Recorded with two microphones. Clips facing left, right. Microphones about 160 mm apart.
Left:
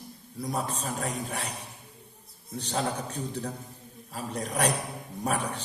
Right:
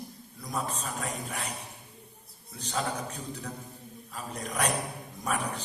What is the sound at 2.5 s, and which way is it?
A man's voice, 35° left (ahead or behind).